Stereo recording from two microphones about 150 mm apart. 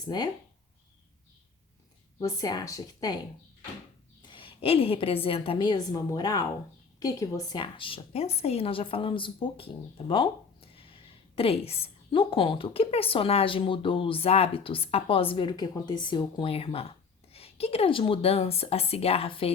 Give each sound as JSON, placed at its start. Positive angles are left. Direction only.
{"t": 0.0, "sound": "speech", "side_deg": 25}
{"t": 2.1, "sound": "speech", "side_deg": 20}
{"t": 4.3, "sound": "a woman's voice", "side_deg": 35}
{"t": 10.1, "sound": "a sound", "side_deg": 35}
{"t": 11.3, "sound": "a woman's voice", "side_deg": 40}